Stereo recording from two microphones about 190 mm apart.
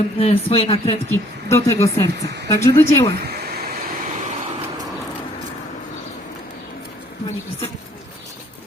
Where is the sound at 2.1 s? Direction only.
60° right (ahead or behind).